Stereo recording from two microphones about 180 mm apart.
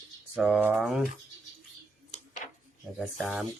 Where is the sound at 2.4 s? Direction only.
45° left (ahead or behind).